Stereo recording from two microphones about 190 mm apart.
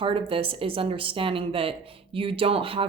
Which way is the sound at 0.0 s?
30° right (ahead or behind).